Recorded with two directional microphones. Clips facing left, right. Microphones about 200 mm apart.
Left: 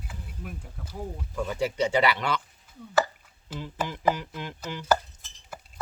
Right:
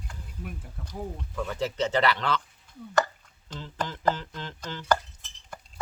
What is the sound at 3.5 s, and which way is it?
Chopping, 10° left (ahead or behind).